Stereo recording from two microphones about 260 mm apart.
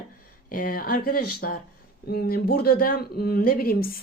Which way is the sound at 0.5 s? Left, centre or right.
Left.